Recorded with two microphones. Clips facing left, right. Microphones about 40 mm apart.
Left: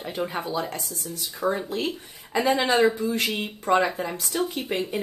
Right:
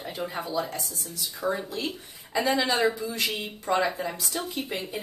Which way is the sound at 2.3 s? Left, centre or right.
Left.